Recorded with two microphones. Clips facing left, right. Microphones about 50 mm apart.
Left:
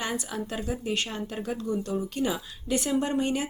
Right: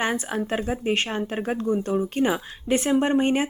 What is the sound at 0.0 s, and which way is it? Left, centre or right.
A woman's voice, right.